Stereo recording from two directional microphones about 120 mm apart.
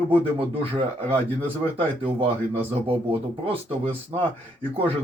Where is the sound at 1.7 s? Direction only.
50° right (ahead or behind).